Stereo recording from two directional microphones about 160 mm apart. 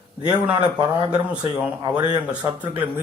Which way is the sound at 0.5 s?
25° right (ahead or behind).